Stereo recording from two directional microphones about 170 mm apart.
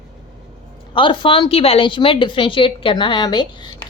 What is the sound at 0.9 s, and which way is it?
A woman's voice, 30° left (ahead or behind).